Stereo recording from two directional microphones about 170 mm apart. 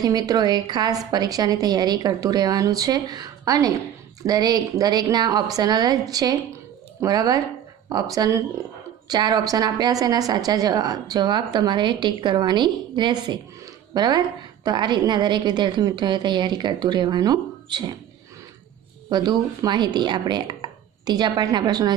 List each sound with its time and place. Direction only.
0.0 s a woman's voice: 25° right (ahead or behind)
19.0 s speech: 25° right (ahead or behind)